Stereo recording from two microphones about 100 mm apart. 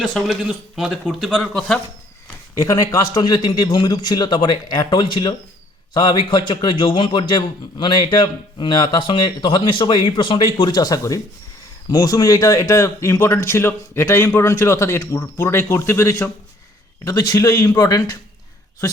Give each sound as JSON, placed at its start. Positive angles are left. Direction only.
{"t": 0.0, "sound": "speech", "side_deg": 0}
{"t": 2.6, "sound": "a man's voice", "side_deg": 35}
{"t": 17.0, "sound": "speech", "side_deg": 40}